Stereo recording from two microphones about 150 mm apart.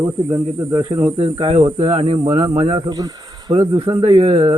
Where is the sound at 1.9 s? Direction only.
45° right (ahead or behind).